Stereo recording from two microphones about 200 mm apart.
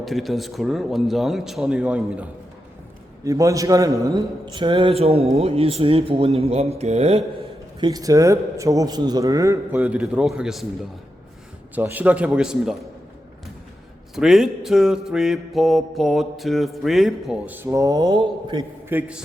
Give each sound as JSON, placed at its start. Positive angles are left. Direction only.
{"t": 0.0, "sound": "mantra", "side_deg": 0}
{"t": 3.2, "sound": "a man's voice", "side_deg": -15}
{"t": 7.8, "sound": "a man's voice", "side_deg": -20}
{"t": 11.7, "sound": "a man's voice", "side_deg": -10}
{"t": 14.2, "sound": "mantra", "side_deg": 0}
{"t": 18.9, "sound": "a man's voice", "side_deg": -5}